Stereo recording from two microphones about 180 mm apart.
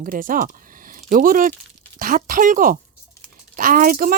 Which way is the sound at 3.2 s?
50° right (ahead or behind).